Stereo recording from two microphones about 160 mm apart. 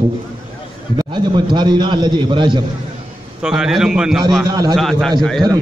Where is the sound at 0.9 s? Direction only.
30° right (ahead or behind).